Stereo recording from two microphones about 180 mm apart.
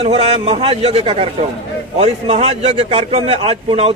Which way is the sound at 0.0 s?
30° right (ahead or behind).